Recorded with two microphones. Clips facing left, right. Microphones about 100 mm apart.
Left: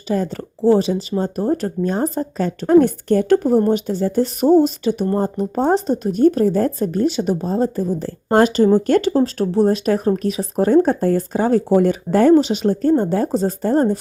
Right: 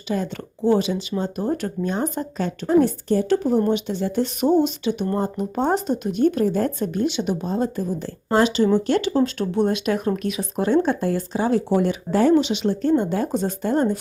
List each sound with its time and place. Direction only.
0.1 s speech: 40° left (ahead or behind)
2.6 s a woman's voice: 55° left (ahead or behind); by 14.0 s 35° left (ahead or behind)